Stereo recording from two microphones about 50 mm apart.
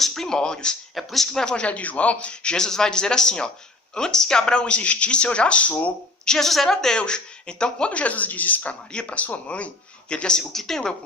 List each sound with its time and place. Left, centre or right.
0.0 s speech: centre; by 5.7 s left
6.2 s speech: centre
6.9 s speech: centre
8.9 s speech: left